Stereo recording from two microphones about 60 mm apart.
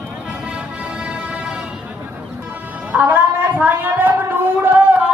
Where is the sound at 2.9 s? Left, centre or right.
Right.